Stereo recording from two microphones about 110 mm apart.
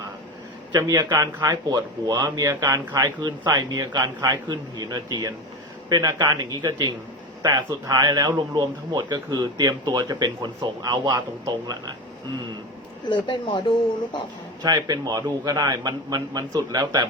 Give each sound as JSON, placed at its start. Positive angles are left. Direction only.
{"t": 0.7, "sound": "a man's voice", "side_deg": -35}
{"t": 13.1, "sound": "speech", "side_deg": 45}
{"t": 14.6, "sound": "a man's voice", "side_deg": -40}